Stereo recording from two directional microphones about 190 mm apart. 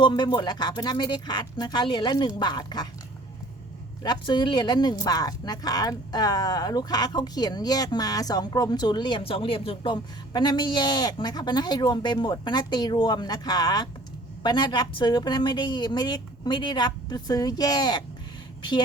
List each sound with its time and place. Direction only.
0.0 s speech: 25° left (ahead or behind)
4.0 s speech: 25° left (ahead or behind)